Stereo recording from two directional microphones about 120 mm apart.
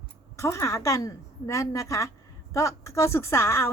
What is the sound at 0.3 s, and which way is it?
A woman's voice, 25° left (ahead or behind).